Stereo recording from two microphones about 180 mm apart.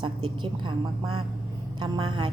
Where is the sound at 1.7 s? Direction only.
25° right (ahead or behind).